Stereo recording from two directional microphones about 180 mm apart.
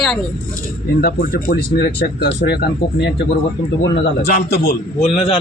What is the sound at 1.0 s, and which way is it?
Speech, 55° left (ahead or behind).